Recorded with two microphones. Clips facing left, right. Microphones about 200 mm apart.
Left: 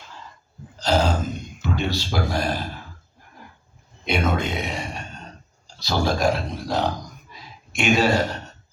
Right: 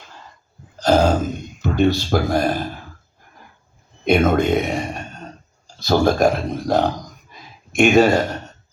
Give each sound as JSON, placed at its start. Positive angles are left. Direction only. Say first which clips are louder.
{"t": 0.8, "sound": "throat clearing", "louder": "right 6 dB", "side_deg": -50}
{"t": 1.6, "sound": "speech", "louder": "right 9 dB", "side_deg": -50}
{"t": 4.0, "sound": "a man's voice", "louder": "right 8 dB", "side_deg": -50}